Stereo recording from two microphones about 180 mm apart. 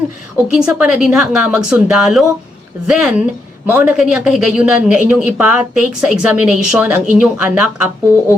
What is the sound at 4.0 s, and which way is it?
Speech, 5° right (ahead or behind).